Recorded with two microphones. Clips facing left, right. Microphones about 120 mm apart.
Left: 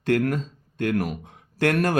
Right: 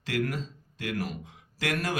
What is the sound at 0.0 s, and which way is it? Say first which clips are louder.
Speech: left 8 dB; 55° left (ahead or behind).